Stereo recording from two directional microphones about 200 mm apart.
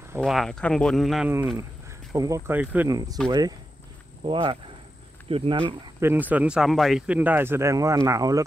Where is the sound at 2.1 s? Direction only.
15° right (ahead or behind).